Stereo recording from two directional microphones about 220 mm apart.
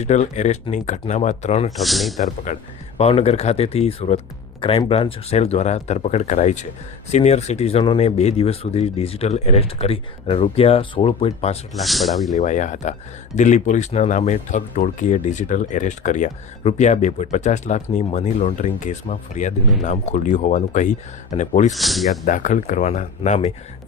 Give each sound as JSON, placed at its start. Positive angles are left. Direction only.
{"t": 0.0, "sound": "speech", "side_deg": 30}
{"t": 1.7, "sound": "speech", "side_deg": 0}
{"t": 3.0, "sound": "speech", "side_deg": 30}
{"t": 11.7, "sound": "speech", "side_deg": 0}
{"t": 12.3, "sound": "speech", "side_deg": 35}
{"t": 21.7, "sound": "speech", "side_deg": 0}
{"t": 22.3, "sound": "speech", "side_deg": 35}